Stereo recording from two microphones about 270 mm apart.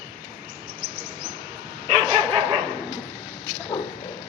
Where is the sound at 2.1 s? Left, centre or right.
Right.